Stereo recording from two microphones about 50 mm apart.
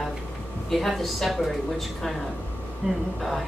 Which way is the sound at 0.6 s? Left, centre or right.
Centre.